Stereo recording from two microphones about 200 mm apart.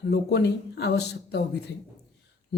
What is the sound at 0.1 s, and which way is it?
A man's voice, 55° left (ahead or behind).